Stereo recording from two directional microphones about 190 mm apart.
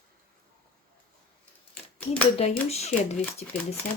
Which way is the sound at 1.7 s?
10° left (ahead or behind).